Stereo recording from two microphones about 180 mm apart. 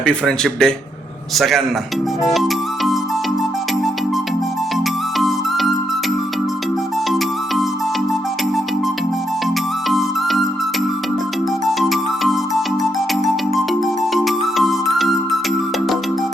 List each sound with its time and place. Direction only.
0.0 s a man's voice: 5° left (ahead or behind)
2.3 s music: centre (ahead or behind)
5.1 s music: centre (ahead or behind)
9.9 s music: centre (ahead or behind)
11.6 s music: centre (ahead or behind)